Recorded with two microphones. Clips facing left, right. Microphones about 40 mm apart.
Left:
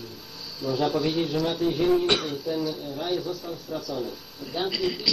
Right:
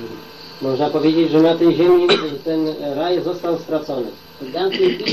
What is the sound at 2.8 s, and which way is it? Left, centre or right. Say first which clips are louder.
Speech: right 10 dB; right.